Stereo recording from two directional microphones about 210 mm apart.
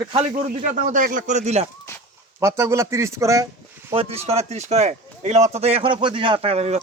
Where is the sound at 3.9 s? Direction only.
30° right (ahead or behind).